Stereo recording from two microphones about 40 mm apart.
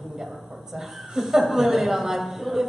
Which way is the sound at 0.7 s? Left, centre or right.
Centre.